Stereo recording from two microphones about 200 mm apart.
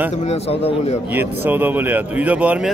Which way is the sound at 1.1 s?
10° right (ahead or behind).